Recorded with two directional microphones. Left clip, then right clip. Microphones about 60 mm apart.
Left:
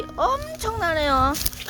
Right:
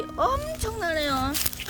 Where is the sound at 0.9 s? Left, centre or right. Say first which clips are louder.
Left 6 dB; left.